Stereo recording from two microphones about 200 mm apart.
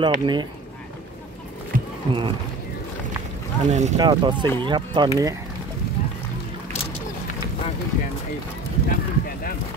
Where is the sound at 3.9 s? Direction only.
25° right (ahead or behind).